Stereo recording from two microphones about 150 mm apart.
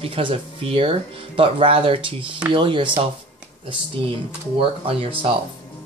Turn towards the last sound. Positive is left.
turn(degrees=-40)  # may be behind; listen again after turning